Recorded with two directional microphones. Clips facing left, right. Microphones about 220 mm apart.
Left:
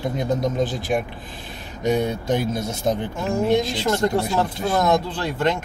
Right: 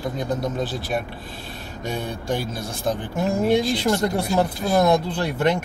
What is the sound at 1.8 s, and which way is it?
A man's voice, 20° left (ahead or behind).